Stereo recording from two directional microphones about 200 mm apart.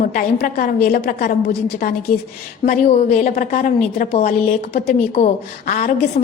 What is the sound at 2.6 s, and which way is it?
A woman's voice, 40° left (ahead or behind).